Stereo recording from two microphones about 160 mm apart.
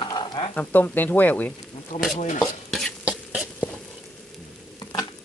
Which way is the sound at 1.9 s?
50° left (ahead or behind).